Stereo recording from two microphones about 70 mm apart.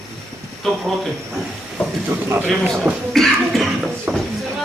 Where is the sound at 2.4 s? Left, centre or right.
Centre.